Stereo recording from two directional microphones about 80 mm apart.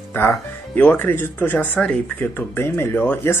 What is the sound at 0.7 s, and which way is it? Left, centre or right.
Speech, left.